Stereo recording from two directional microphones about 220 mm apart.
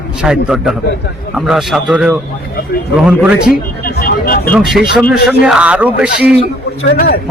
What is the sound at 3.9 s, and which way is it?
Speech, 40° left (ahead or behind).